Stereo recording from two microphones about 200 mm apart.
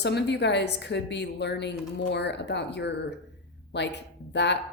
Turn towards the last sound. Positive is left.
turn(degrees=60)  # may be behind; listen again after turning